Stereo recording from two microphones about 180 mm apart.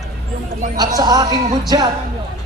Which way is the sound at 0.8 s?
20° right (ahead or behind).